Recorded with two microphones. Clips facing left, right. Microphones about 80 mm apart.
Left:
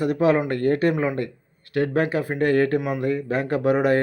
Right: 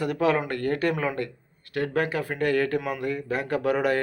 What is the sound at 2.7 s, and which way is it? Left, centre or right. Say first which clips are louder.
Speech: left 4 dB; left.